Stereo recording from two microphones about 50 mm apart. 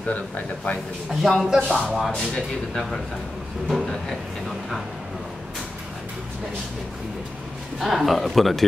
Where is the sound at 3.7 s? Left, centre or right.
Centre.